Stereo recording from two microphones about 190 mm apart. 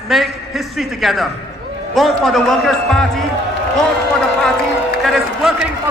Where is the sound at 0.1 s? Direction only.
Centre (ahead or behind).